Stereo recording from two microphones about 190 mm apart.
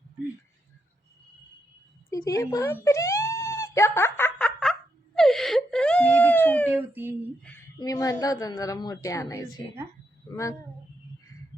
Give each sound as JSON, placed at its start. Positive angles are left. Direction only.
{"t": 2.0, "sound": "a woman's voice", "side_deg": 15}
{"t": 2.8, "sound": "wail", "side_deg": 15}
{"t": 6.7, "sound": "speech", "side_deg": -10}
{"t": 7.8, "sound": "a woman's voice", "side_deg": 20}